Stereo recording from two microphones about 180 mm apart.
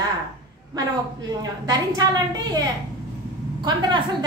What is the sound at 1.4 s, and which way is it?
Speech, 20° right (ahead or behind).